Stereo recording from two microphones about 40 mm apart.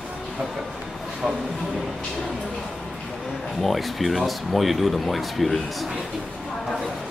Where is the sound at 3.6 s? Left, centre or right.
Centre.